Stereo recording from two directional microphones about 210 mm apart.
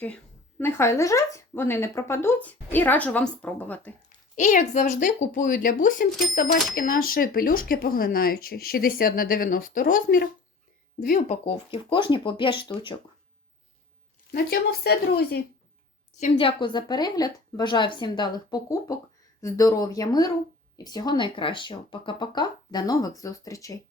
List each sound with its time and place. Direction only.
0.6 s speech: 10° left (ahead or behind)
4.4 s a woman's voice: 35° left (ahead or behind)
11.4 s speech: 25° left (ahead or behind)
14.3 s speech: 45° left (ahead or behind)
16.2 s speech: 30° left (ahead or behind)